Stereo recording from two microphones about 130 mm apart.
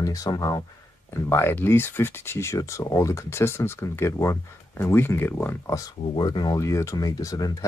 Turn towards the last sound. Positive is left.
turn(degrees=30)  # may be behind; listen again after turning